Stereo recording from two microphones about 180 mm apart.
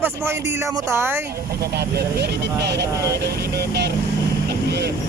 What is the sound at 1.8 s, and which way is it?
Speech, 65° right (ahead or behind).